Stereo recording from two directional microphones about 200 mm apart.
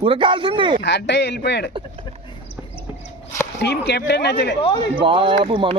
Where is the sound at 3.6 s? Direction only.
55° left (ahead or behind).